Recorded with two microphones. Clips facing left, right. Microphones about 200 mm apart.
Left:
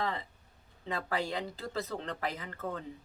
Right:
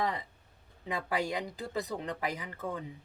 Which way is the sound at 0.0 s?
15° right (ahead or behind).